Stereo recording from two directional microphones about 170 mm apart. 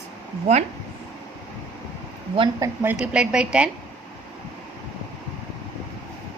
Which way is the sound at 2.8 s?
5° right (ahead or behind).